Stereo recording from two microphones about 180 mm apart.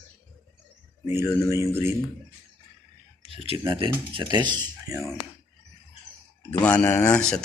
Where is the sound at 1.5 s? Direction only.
15° right (ahead or behind).